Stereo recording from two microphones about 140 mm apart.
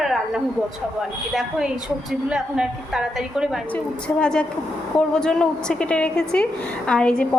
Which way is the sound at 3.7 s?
5° left (ahead or behind).